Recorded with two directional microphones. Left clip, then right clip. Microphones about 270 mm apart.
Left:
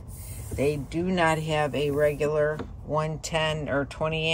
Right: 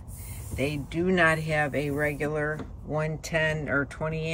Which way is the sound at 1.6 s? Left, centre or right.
Left.